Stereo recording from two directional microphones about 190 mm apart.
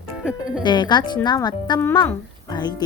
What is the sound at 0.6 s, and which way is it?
Speech, 25° left (ahead or behind).